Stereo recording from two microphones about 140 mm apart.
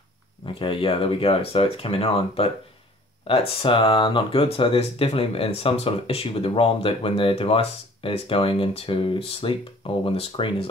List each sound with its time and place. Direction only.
0.6 s speech: 40° left (ahead or behind)